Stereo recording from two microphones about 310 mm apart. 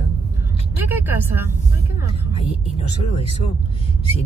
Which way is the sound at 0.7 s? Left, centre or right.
Centre.